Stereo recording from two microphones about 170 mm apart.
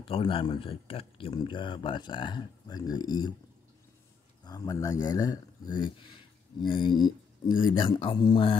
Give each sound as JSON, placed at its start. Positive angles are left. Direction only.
{"t": 0.0, "sound": "speech", "side_deg": 30}
{"t": 4.5, "sound": "speech", "side_deg": 20}